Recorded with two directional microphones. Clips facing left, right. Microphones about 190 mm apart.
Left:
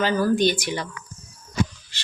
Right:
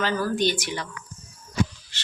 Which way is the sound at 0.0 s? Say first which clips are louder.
Left 4 dB; 15° left (ahead or behind).